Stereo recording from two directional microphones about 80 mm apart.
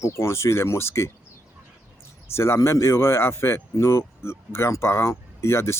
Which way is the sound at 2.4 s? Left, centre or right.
Left.